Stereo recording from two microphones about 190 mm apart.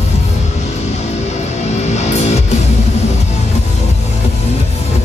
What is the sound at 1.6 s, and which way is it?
Music, 35° left (ahead or behind).